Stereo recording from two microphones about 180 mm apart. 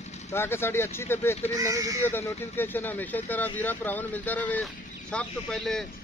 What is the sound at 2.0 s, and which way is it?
Speech, 10° left (ahead or behind).